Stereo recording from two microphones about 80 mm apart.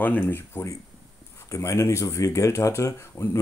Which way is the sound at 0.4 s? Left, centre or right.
Left.